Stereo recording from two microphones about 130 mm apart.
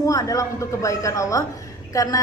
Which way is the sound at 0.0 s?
25° left (ahead or behind).